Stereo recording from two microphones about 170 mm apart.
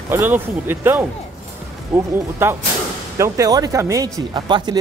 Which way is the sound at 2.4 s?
15° right (ahead or behind).